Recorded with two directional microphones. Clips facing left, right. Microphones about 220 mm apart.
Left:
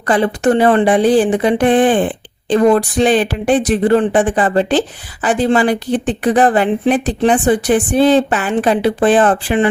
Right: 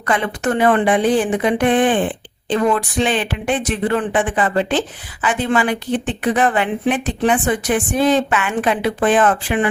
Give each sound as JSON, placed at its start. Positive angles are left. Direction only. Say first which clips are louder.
{"t": 0.1, "sound": "speech", "louder": "left 6 dB", "side_deg": 35}